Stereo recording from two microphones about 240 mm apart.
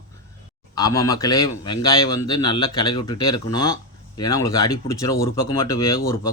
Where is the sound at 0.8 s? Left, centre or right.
Centre.